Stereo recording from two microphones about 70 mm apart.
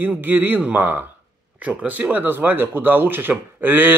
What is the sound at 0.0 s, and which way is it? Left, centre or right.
Speech, right.